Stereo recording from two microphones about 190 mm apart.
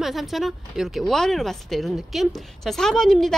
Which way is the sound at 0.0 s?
Centre (ahead or behind).